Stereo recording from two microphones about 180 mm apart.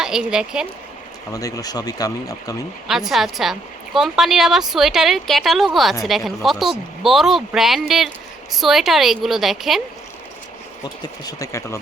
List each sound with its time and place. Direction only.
0.0 s speech: 5° right (ahead or behind)
1.3 s speech: 20° left (ahead or behind)
2.8 s speech: centre (ahead or behind)
10.8 s speech: 20° left (ahead or behind)